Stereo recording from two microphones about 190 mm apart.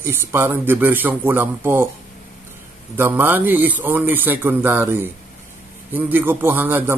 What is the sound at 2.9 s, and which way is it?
A man's voice, 10° right (ahead or behind).